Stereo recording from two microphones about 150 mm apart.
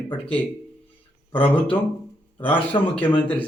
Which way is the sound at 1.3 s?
10° left (ahead or behind).